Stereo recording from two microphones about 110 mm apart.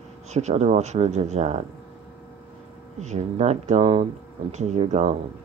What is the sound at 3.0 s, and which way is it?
Speech, 90° right.